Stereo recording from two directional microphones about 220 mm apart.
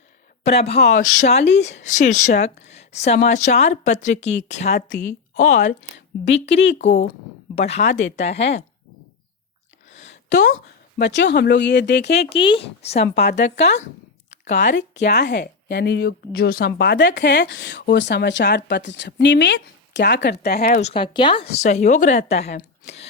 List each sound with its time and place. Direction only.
0.4 s a woman's voice: 30° left (ahead or behind)
2.6 s a sound: 30° left (ahead or behind)
3.2 s speech: 35° left (ahead or behind)
6.5 s speech: 50° left (ahead or behind)
6.7 s a woman's voice: 30° left (ahead or behind)
10.0 s a sound: 55° left (ahead or behind)
10.3 s speech: 35° left (ahead or behind)
12.4 s a woman's voice: 25° left (ahead or behind)
13.1 s speech: 50° left (ahead or behind)
14.8 s speech: 50° left (ahead or behind)
20.9 s a woman's voice: 20° left (ahead or behind)
22.5 s a woman's voice: 40° left (ahead or behind)